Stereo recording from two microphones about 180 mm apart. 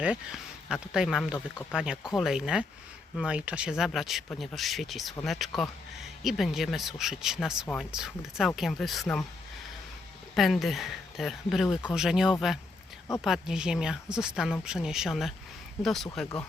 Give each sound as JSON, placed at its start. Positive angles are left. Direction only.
{"t": 0.0, "sound": "speech", "side_deg": -5}
{"t": 10.3, "sound": "speech", "side_deg": 0}